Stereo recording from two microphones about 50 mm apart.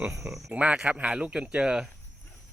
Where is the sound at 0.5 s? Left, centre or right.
Right.